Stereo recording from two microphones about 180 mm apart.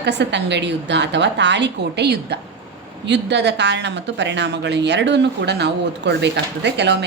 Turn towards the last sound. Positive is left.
turn(degrees=-70)  # may be behind; listen again after turning